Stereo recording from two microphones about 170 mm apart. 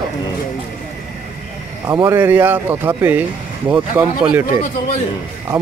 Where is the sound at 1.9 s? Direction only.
15° right (ahead or behind).